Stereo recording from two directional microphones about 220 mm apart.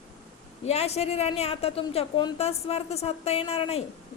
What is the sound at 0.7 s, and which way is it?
A woman's voice, 30° left (ahead or behind).